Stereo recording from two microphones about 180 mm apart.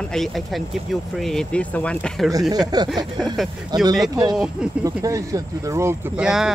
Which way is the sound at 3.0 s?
25° right (ahead or behind).